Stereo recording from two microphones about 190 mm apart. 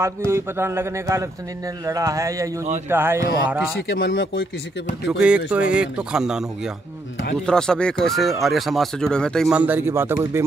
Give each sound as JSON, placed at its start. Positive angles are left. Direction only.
{"t": 0.3, "sound": "a man's voice", "side_deg": -15}
{"t": 3.9, "sound": "speech", "side_deg": 80}
{"t": 5.1, "sound": "a man's voice", "side_deg": -5}
{"t": 9.5, "sound": "a man's voice", "side_deg": -10}